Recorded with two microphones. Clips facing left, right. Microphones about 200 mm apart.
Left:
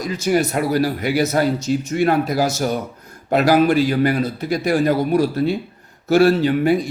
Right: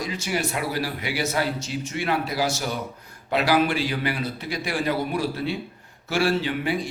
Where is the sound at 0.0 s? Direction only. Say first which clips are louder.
Left 8 dB; 45° left (ahead or behind).